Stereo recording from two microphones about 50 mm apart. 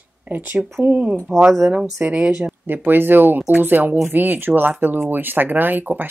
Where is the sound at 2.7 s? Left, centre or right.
Right.